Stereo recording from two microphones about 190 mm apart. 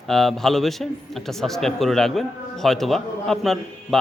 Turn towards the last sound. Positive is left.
turn(degrees=0)  # may be behind; listen again after turning